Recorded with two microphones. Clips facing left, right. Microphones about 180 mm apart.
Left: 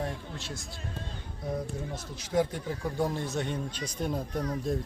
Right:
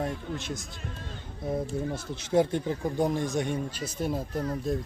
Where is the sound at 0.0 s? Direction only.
20° right (ahead or behind).